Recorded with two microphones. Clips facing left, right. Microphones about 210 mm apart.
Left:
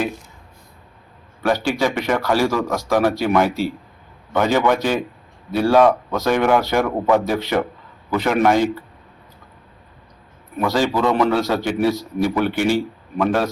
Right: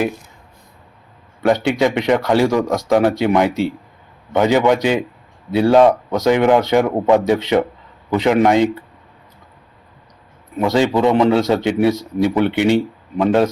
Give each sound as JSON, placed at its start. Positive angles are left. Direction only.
{"t": 1.4, "sound": "a man's voice", "side_deg": -20}
{"t": 10.6, "sound": "speech", "side_deg": -20}